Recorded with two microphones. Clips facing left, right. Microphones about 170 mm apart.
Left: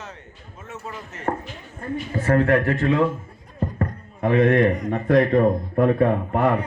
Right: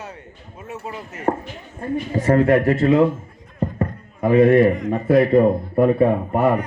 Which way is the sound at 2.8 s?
30° right (ahead or behind).